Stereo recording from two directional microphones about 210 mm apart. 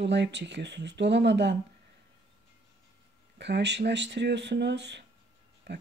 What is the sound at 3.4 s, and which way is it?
Speech, 55° right (ahead or behind).